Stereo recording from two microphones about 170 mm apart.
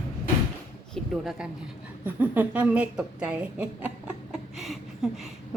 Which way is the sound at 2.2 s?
10° right (ahead or behind).